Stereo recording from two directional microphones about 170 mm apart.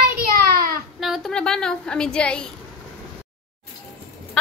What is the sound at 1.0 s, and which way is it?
A woman's voice, centre (ahead or behind).